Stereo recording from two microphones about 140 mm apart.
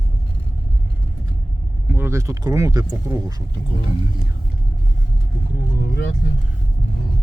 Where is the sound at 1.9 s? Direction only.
15° right (ahead or behind).